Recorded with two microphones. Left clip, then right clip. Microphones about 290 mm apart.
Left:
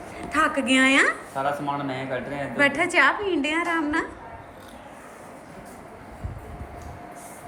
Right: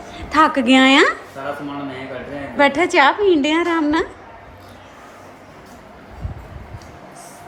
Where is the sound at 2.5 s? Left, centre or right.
Centre.